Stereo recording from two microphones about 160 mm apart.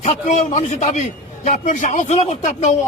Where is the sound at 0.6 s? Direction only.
45° left (ahead or behind).